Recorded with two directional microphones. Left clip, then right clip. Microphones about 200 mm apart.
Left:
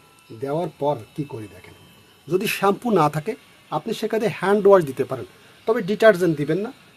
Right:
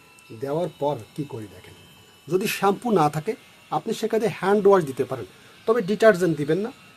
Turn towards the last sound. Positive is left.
turn(degrees=25)  # may be behind; listen again after turning